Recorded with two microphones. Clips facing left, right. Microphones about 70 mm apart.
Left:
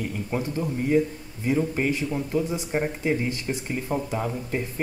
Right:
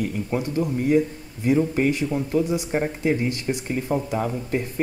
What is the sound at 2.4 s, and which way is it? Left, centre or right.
Speech, centre.